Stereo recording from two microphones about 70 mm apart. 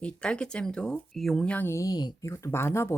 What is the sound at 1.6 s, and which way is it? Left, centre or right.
Speech, left.